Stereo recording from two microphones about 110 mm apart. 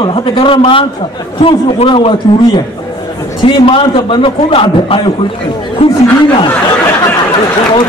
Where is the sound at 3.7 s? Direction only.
50° left (ahead or behind).